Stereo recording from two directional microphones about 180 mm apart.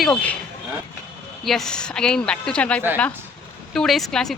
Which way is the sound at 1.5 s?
Centre (ahead or behind).